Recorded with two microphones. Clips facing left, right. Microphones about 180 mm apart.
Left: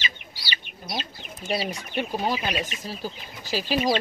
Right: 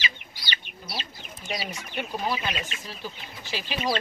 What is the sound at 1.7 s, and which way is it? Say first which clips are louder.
Speech: left 4 dB; 30° left (ahead or behind).